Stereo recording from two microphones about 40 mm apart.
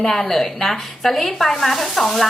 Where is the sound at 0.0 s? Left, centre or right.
Centre.